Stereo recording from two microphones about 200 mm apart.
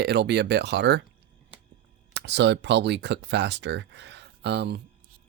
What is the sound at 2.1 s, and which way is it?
Speech, 60° right (ahead or behind).